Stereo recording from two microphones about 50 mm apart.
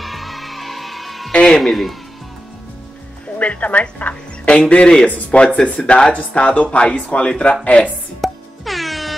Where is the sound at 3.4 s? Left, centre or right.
Left.